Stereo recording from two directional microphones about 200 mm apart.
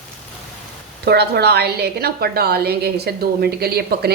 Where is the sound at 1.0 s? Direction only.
55° right (ahead or behind).